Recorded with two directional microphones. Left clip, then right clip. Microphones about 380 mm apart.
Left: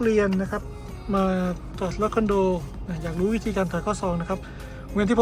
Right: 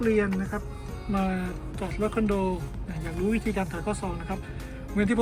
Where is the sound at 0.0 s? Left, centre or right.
Centre.